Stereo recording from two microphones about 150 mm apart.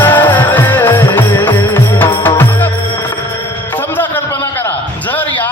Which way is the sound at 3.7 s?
15° left (ahead or behind).